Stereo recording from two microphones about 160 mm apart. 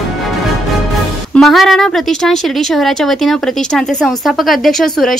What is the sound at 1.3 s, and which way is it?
Speech, centre (ahead or behind).